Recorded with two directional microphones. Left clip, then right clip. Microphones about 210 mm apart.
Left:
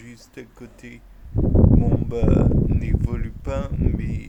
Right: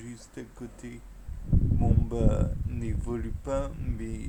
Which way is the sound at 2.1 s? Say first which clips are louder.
Left 9 dB; 25° left (ahead or behind).